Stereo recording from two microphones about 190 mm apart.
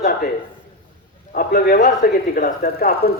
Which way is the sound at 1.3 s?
50° left (ahead or behind).